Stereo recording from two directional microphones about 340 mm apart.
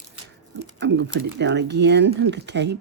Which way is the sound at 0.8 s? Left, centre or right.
Right.